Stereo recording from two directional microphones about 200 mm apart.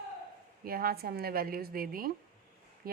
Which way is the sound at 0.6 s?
50° right (ahead or behind).